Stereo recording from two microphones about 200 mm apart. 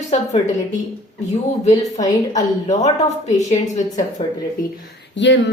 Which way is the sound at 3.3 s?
35° left (ahead or behind).